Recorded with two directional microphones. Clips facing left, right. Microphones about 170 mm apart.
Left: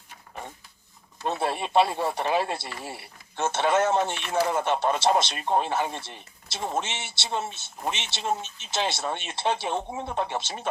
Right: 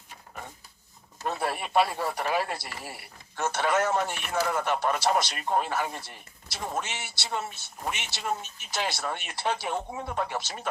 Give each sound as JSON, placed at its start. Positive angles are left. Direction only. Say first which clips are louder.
{"t": 1.2, "sound": "speech", "louder": "left 3 dB", "side_deg": 25}